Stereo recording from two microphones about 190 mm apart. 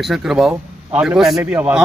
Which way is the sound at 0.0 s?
Centre (ahead or behind).